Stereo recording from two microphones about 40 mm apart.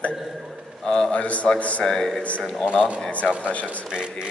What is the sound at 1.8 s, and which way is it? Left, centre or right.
Speech, centre.